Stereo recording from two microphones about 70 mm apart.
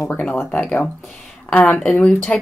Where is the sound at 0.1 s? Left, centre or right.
Centre.